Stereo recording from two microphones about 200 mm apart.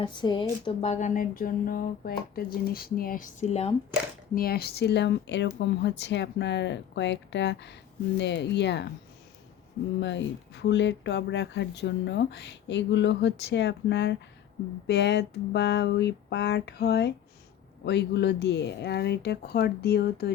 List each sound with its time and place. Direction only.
0.0 s speech: 25° left (ahead or behind)
4.4 s speech: 50° left (ahead or behind)
10.0 s speech: 60° left (ahead or behind)